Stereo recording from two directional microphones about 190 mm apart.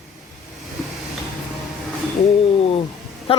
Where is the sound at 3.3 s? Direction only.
30° left (ahead or behind).